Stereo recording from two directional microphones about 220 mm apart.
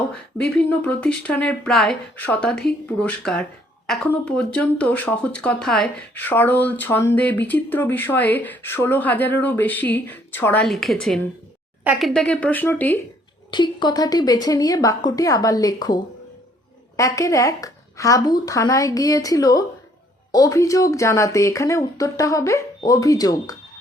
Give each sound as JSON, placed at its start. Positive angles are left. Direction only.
{"t": 0.4, "sound": "speech", "side_deg": 5}
{"t": 13.5, "sound": "speech", "side_deg": 20}
{"t": 17.0, "sound": "speech", "side_deg": 15}